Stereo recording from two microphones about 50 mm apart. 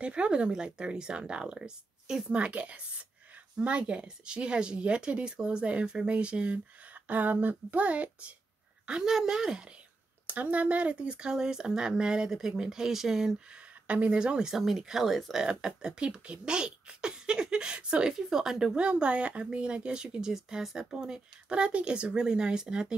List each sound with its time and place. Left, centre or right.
0.0 s speech: right
2.3 s speech: right
7.1 s a woman's voice: right; by 9.7 s centre
10.2 s speech: right; by 13.4 s centre
13.8 s speech: right
14.5 s speech: centre
15.4 s speech: centre
18.7 s speech: right